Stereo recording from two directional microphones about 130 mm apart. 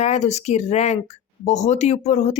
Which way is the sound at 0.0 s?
60° left (ahead or behind).